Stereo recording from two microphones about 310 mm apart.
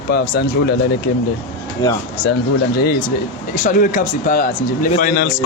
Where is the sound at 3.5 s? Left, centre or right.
Left.